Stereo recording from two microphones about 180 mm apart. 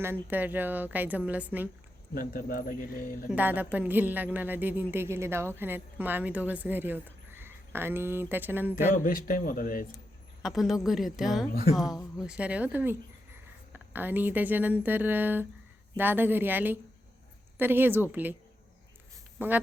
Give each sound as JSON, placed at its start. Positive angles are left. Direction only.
{"t": 0.0, "sound": "a woman's voice", "side_deg": -10}
{"t": 2.1, "sound": "speech", "side_deg": 50}
{"t": 3.2, "sound": "a woman's voice", "side_deg": -10}
{"t": 9.0, "sound": "speech", "side_deg": 55}
{"t": 10.4, "sound": "a woman's voice", "side_deg": 0}
{"t": 19.4, "sound": "a woman's voice", "side_deg": -10}